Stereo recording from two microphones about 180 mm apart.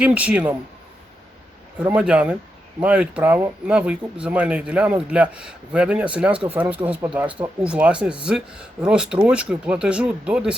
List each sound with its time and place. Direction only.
0.0 s speech: 5° right (ahead or behind)
1.8 s speech: 5° right (ahead or behind)